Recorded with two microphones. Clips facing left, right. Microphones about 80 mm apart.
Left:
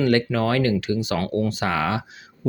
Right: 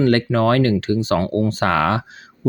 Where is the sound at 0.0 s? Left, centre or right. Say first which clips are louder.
Right 4 dB; right.